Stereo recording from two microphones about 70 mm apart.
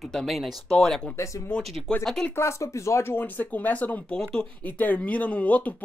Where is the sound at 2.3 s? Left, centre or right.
Left.